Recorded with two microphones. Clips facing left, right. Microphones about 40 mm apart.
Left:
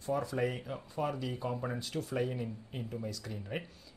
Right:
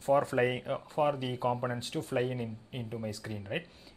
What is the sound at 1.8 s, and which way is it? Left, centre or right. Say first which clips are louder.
Speech: right 3 dB; right.